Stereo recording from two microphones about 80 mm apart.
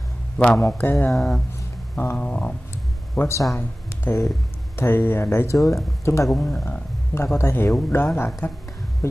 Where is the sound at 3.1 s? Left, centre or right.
Left.